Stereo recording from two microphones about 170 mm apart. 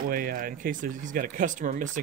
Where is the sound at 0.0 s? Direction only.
55° right (ahead or behind).